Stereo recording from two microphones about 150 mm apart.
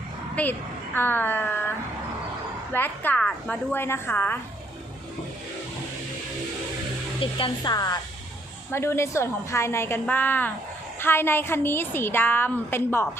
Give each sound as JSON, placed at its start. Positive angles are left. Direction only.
{"t": 0.4, "sound": "a woman's voice", "side_deg": 10}
{"t": 2.7, "sound": "a woman's voice", "side_deg": 15}
{"t": 7.2, "sound": "a woman's voice", "side_deg": 35}